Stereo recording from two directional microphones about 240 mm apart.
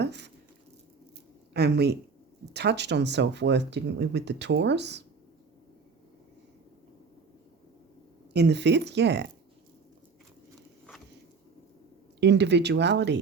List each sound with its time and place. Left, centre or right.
0.0 s a sound: right
1.5 s speech: right
8.3 s speech: right
12.2 s speech: right